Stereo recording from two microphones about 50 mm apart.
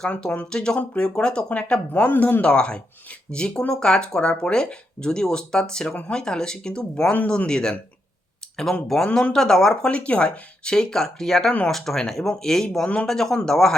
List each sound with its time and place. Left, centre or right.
0.5 s speech: centre; by 2.2 s left
2.4 s speech: centre
6.9 s speech: left
7.3 s speech: centre
9.9 s speech: left; by 12.8 s centre
12.8 s speech: left
13.1 s speech: centre